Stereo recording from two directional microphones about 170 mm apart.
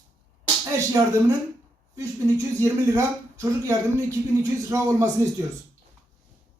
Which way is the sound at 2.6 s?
20° right (ahead or behind).